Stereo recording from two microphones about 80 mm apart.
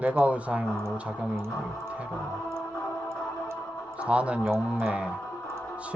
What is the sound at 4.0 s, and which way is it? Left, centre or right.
Speech, centre.